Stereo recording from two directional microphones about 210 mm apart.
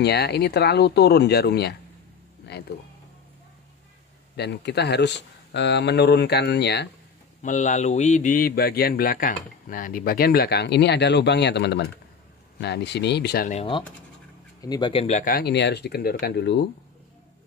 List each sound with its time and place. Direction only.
0.0 s a man's voice: 50° left (ahead or behind)
4.4 s a man's voice: 50° left (ahead or behind)
7.4 s a man's voice: 35° left (ahead or behind)
13.5 s a man's voice: 25° left (ahead or behind); by 16.6 s 55° left (ahead or behind)